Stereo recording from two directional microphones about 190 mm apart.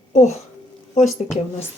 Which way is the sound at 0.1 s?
35° left (ahead or behind).